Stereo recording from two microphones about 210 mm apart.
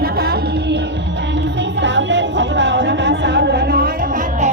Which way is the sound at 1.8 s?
60° right (ahead or behind).